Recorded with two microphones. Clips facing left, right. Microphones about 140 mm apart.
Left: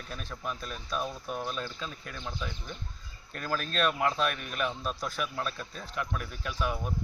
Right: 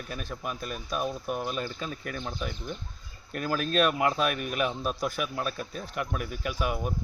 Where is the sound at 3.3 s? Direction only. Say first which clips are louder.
Right 6 dB; 10° right (ahead or behind).